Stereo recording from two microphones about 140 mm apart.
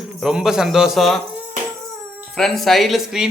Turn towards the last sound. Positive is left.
turn(degrees=0)  # may be behind; listen again after turning